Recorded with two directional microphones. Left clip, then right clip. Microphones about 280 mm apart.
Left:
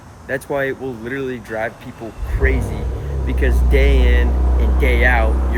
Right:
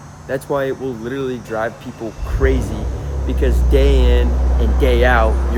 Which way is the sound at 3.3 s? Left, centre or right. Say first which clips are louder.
Right 2 dB; centre.